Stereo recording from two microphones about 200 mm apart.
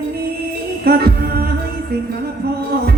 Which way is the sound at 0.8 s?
50° right (ahead or behind).